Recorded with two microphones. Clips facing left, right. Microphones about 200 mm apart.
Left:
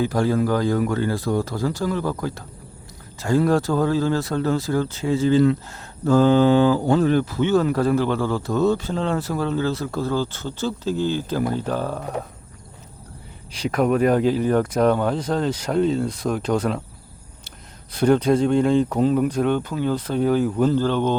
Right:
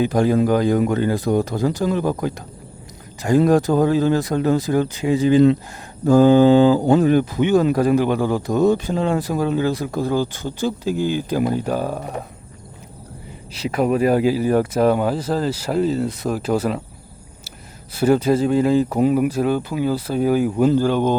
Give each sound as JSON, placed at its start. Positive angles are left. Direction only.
{"t": 0.0, "sound": "speech", "side_deg": -20}
{"t": 13.6, "sound": "speech", "side_deg": -5}
{"t": 17.9, "sound": "speech", "side_deg": -5}